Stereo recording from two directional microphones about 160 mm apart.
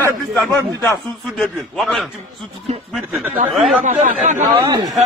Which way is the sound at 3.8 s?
50° right (ahead or behind).